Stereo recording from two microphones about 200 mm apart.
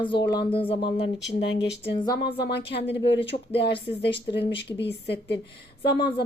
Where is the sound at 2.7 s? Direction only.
60° left (ahead or behind).